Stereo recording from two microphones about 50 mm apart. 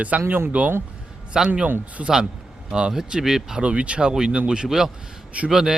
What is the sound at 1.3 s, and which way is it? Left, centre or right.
Speech, centre.